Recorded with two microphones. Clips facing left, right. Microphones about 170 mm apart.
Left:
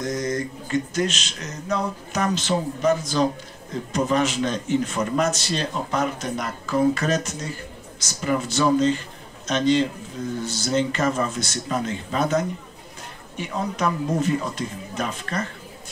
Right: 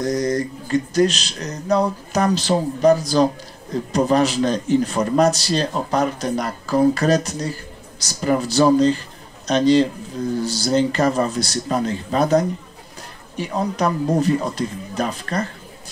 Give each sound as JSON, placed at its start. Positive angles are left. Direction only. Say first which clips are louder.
{"t": 0.0, "sound": "a man's voice", "louder": "right 5 dB", "side_deg": -35}